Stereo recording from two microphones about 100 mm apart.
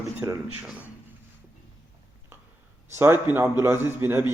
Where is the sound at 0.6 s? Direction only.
10° right (ahead or behind).